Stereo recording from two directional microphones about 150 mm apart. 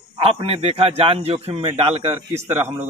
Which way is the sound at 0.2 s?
40° right (ahead or behind).